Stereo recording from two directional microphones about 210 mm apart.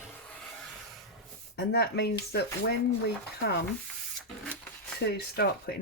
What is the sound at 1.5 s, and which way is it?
Speech, 50° left (ahead or behind).